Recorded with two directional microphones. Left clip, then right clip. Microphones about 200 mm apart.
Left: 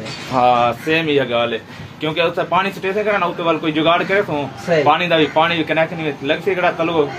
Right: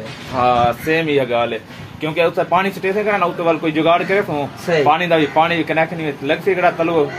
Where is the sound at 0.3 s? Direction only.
45° left (ahead or behind).